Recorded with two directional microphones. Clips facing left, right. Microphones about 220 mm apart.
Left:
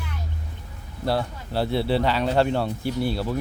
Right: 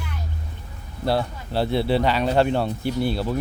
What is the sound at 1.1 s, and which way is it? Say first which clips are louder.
Speech: right 2 dB; 25° right (ahead or behind).